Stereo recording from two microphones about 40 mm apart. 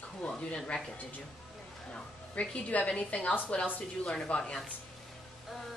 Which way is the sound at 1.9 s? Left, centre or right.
Left.